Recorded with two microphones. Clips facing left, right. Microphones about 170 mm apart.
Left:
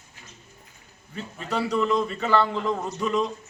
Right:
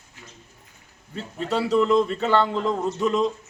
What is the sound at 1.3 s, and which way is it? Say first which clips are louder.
A man's voice: right 4 dB; 25° right (ahead or behind).